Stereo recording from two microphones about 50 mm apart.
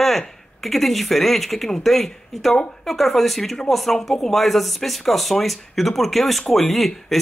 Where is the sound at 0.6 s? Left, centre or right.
Centre.